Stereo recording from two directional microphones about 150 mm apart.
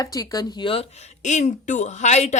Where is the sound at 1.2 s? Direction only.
55° left (ahead or behind).